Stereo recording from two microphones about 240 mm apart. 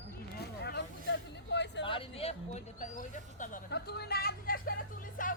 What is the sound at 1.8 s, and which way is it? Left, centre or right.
Speech, left.